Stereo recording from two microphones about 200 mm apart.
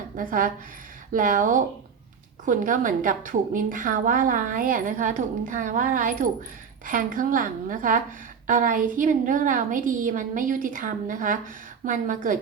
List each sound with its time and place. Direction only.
0.2 s a woman's voice: 45° right (ahead or behind)